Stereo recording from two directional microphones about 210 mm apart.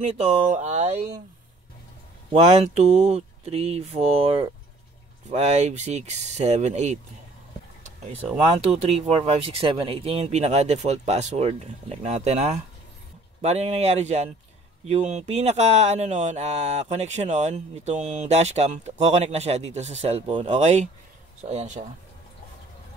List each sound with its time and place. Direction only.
0.0 s speech: 30° right (ahead or behind)
2.3 s speech: 30° right (ahead or behind)
7.8 s a sound: 35° right (ahead or behind)
8.5 s speech: 30° right (ahead or behind)